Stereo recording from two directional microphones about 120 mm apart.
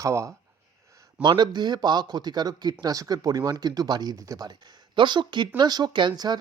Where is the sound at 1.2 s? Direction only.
40° right (ahead or behind).